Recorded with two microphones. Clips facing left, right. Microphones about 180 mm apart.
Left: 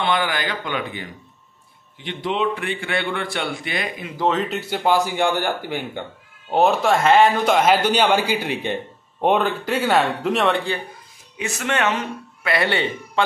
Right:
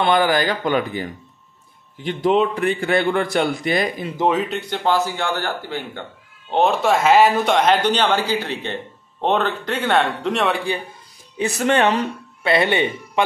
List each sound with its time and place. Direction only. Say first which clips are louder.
0.0 s a man's voice: right 5 dB; 40° right (ahead or behind)
4.2 s speech: right 2 dB; 10° right (ahead or behind)
4.5 s a man's voice: even; 5° left (ahead or behind)
6.5 s speech: even; centre (ahead or behind)
7.5 s a man's voice: even; 5° left (ahead or behind)
11.3 s a man's voice: right 6 dB; 35° right (ahead or behind)
12.4 s speech: right 3 dB; 20° right (ahead or behind)